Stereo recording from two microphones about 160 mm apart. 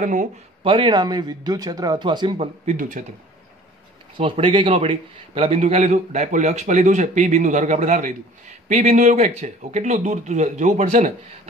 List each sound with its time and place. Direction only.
0.0 s speech: 55° right (ahead or behind)
0.7 s speech: 30° right (ahead or behind); by 3.1 s 50° right (ahead or behind)
4.2 s a man's voice: 35° right (ahead or behind)